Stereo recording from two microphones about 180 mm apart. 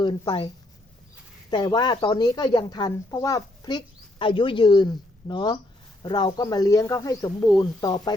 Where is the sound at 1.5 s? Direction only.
25° left (ahead or behind).